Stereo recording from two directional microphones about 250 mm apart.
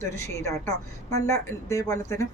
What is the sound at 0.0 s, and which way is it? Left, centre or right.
Speech, centre.